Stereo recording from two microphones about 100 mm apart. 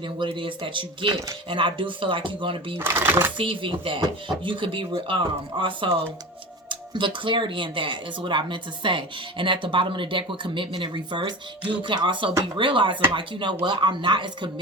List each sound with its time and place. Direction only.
0.2 s speech: 55° right (ahead or behind)
2.7 s speech: 20° right (ahead or behind)
3.3 s speech: 60° right (ahead or behind)